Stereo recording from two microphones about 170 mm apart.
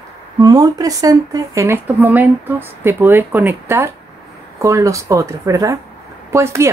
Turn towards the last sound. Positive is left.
turn(degrees=-15)  # may be behind; listen again after turning